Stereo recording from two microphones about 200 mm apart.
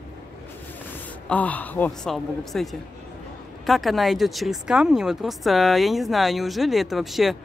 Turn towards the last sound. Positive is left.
turn(degrees=0)  # may be behind; listen again after turning